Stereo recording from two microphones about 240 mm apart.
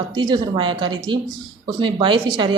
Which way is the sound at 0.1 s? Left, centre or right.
Centre.